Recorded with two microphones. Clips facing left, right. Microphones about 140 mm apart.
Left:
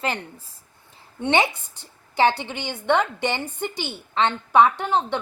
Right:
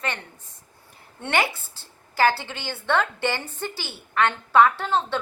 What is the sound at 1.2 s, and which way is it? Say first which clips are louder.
A woman's voice: left 4 dB; 20° left (ahead or behind).